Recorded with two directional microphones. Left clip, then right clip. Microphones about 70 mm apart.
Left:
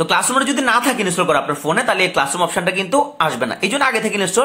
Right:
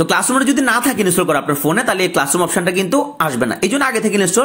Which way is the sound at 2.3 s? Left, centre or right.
Right.